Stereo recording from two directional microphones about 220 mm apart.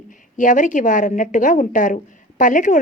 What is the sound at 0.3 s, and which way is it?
A woman's voice, 35° left (ahead or behind).